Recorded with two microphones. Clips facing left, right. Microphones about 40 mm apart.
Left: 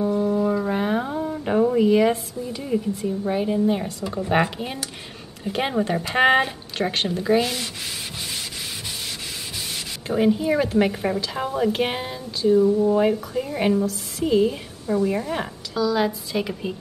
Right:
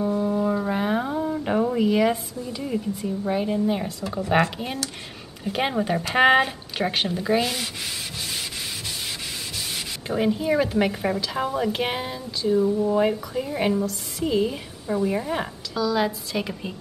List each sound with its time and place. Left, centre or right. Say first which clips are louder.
0.2 s a sound: left 2 dB; centre
4.3 s a woman's voice: even; centre
10.0 s a woman's voice: left 3 dB; centre